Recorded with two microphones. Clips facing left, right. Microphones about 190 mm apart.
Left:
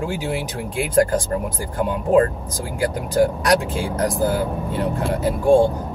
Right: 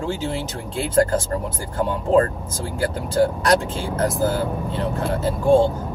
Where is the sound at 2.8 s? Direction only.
15° left (ahead or behind).